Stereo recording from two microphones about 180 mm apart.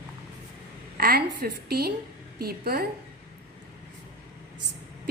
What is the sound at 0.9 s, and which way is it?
A woman's voice, 55° right (ahead or behind).